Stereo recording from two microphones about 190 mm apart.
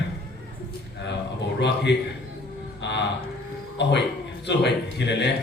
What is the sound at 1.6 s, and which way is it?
Speech, 65° left (ahead or behind).